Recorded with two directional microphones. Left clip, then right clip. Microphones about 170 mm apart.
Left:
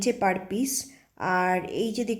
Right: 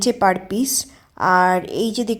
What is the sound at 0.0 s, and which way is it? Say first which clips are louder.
A woman's voice: right 8 dB; 20° right (ahead or behind).